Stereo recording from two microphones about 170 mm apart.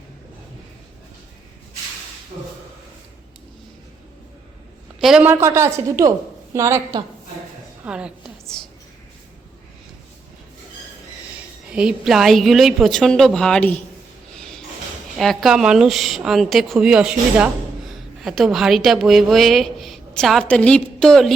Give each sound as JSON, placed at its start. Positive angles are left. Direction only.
{"t": 4.9, "sound": "a man's voice", "side_deg": -5}
{"t": 5.3, "sound": "a woman's voice", "side_deg": -15}
{"t": 7.9, "sound": "a sound", "side_deg": -5}
{"t": 11.7, "sound": "speech", "side_deg": -5}
{"t": 14.3, "sound": "snort", "side_deg": 5}
{"t": 15.2, "sound": "speech", "side_deg": 0}